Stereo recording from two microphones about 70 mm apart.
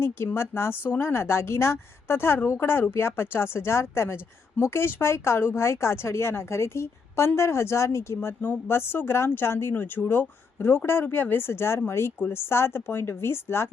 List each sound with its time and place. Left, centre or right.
0.0 s a woman's voice: left